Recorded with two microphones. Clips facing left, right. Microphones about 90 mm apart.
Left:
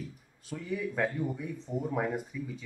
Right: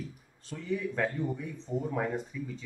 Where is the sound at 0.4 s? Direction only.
10° left (ahead or behind).